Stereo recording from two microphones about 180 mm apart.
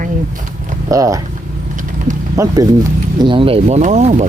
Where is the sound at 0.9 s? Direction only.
20° right (ahead or behind).